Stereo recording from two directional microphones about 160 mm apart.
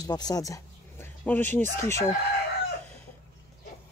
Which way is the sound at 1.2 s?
10° left (ahead or behind).